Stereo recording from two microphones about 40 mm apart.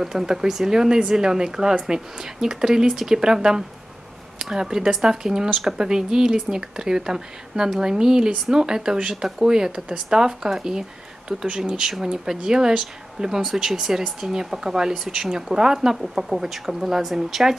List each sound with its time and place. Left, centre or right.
0.0 s speech: centre
16.0 s speech: centre